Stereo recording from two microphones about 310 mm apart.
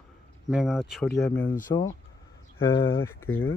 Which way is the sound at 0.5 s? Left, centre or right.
Centre.